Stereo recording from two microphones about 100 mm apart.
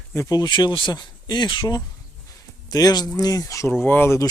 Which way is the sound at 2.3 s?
40° left (ahead or behind).